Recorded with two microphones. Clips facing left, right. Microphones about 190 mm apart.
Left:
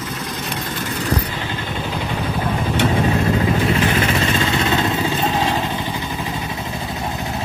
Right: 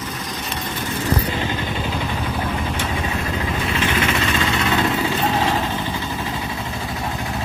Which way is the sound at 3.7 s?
35° left (ahead or behind).